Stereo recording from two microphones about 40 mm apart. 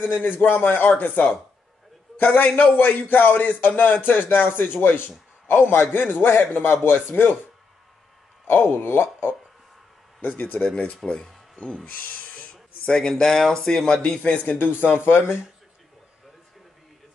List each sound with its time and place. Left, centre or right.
0.0 s a man's voice: left
2.2 s a man's voice: left
8.5 s speech: left
10.2 s speech: left
10.6 s speech: left
11.1 s a sound: centre
11.9 s a sound: left
13.1 s speech: centre
14.2 s speech: left
14.8 s speech: left